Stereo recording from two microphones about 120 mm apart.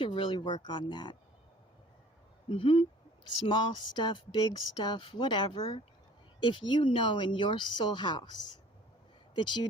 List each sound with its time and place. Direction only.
0.0 s speech: 45° left (ahead or behind)
2.5 s speech: 45° left (ahead or behind)